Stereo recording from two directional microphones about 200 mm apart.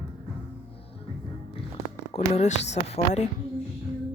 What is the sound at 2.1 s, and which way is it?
Speech, 35° left (ahead or behind).